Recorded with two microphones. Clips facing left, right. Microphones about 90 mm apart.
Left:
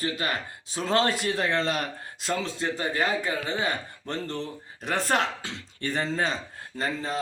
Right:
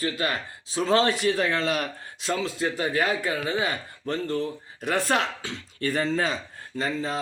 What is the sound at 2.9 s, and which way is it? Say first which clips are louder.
Speech: right 1 dB; 30° left (ahead or behind).